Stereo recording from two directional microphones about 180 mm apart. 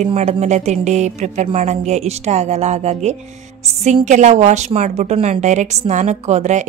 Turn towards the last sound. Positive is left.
turn(degrees=-40)  # may be behind; listen again after turning